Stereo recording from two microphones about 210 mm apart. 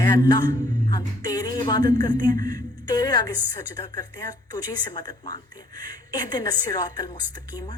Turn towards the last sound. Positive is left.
turn(degrees=20)  # may be behind; listen again after turning